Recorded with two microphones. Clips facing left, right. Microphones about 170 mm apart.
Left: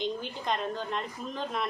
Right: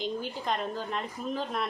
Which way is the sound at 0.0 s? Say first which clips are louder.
Even; 5° right (ahead or behind).